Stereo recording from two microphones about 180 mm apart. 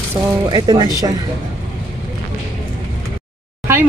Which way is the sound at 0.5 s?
25° right (ahead or behind).